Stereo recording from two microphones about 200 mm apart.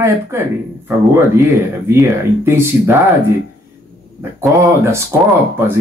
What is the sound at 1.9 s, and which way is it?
Speech, 10° right (ahead or behind).